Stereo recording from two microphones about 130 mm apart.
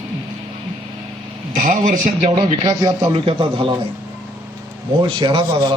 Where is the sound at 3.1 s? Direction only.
45° right (ahead or behind).